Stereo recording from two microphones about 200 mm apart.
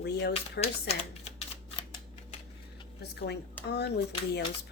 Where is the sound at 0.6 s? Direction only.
30° left (ahead or behind).